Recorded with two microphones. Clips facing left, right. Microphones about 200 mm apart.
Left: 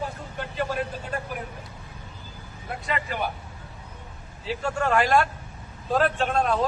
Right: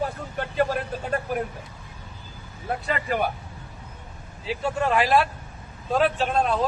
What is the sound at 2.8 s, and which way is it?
Speech, 45° right (ahead or behind).